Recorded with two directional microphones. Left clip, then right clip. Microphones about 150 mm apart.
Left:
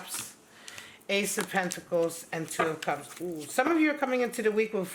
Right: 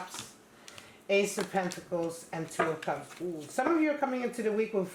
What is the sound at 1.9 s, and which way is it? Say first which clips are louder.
Speech: left 7 dB; 30° left (ahead or behind).